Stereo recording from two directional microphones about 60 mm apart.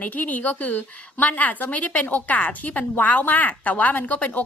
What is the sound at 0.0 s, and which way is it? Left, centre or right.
A woman's voice, left.